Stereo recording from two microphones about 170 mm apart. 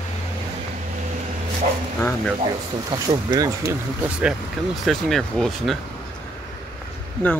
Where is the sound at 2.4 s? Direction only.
30° right (ahead or behind).